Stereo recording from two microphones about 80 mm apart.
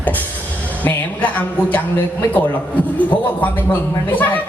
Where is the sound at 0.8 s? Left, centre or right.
Left.